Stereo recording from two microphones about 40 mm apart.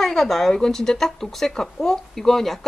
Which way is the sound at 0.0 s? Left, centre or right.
Centre.